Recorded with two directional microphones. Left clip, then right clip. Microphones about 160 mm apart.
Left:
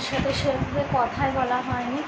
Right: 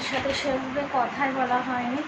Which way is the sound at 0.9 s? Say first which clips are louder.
Left 2 dB; 5° left (ahead or behind).